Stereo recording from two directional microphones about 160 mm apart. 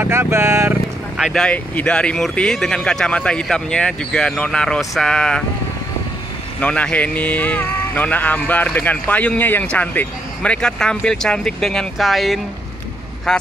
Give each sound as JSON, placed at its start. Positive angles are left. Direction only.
{"t": 0.0, "sound": "speech", "side_deg": -15}
{"t": 1.1, "sound": "speech", "side_deg": 0}
{"t": 6.6, "sound": "speech", "side_deg": 5}